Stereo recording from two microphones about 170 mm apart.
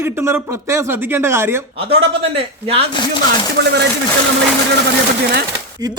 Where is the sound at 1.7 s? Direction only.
35° right (ahead or behind).